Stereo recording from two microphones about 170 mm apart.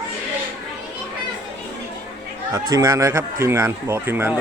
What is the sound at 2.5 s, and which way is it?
Speech, 20° right (ahead or behind).